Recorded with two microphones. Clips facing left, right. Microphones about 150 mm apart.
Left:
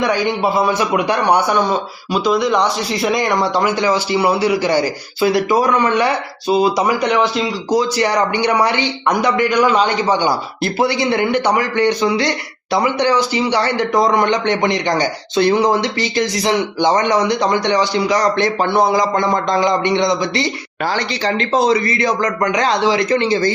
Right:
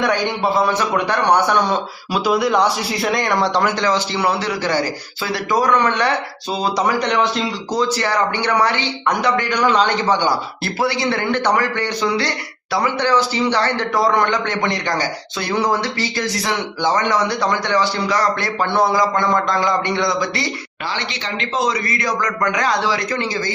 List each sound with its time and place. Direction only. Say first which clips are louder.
0.0 s speech: left 2 dB; 5° left (ahead or behind)
2.1 s a man's voice: left 1 dB; 5° right (ahead or behind); by 20.5 s 20° left (ahead or behind)
20.8 s a man's voice: left 8 dB; 40° left (ahead or behind); by 23.4 s 20° left (ahead or behind)